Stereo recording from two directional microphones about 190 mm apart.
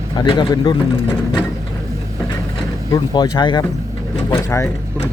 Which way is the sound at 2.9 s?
20° left (ahead or behind).